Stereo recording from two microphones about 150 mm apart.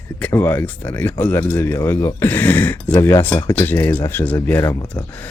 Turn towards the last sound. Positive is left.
turn(degrees=10)  # may be behind; listen again after turning